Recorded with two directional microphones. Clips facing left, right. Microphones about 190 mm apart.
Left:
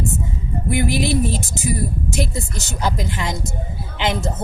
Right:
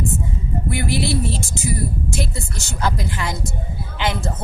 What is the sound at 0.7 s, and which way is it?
A woman's voice, 20° left (ahead or behind).